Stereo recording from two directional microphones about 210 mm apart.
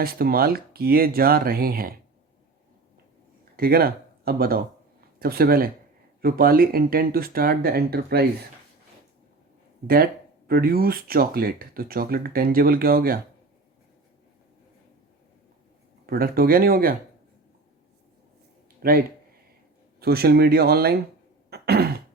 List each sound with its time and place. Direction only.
0.0 s speech: 45° right (ahead or behind)
3.5 s speech: 45° right (ahead or behind)
9.8 s speech: 45° right (ahead or behind)
16.0 s speech: 45° right (ahead or behind)
18.8 s speech: 45° right (ahead or behind)
21.5 s throat clearing: 50° right (ahead or behind)